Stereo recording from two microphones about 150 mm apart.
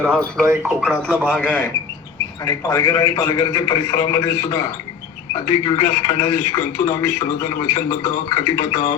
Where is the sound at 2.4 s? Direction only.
20° left (ahead or behind).